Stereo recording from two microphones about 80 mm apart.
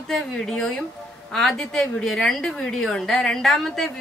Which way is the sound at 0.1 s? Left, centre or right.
Centre.